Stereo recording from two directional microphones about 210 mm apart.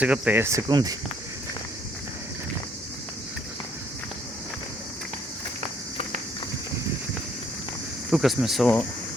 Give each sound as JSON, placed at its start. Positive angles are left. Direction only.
{"t": 0.0, "sound": "speech", "side_deg": -5}
{"t": 8.1, "sound": "speech", "side_deg": 0}